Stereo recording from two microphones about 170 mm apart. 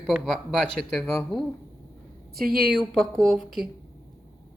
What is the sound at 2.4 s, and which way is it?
Speech, 60° right (ahead or behind).